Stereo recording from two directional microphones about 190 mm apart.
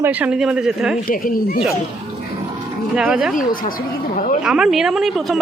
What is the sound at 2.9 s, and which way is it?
Speech, 5° right (ahead or behind).